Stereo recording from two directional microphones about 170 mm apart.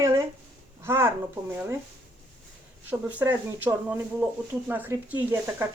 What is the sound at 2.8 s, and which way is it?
A woman's voice, 10° right (ahead or behind).